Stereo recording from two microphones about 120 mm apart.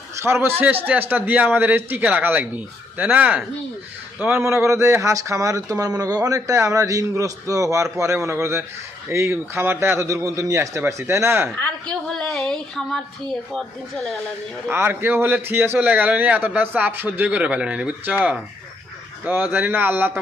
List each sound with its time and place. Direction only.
0.2 s a man's voice: 20° right (ahead or behind)
11.5 s a woman's voice: 10° left (ahead or behind)
12.1 s a sound: 5° left (ahead or behind)
13.5 s speech: 5° left (ahead or behind)
14.7 s a man's voice: 15° right (ahead or behind)